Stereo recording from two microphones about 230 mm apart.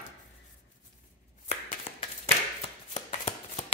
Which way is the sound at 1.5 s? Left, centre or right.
Left.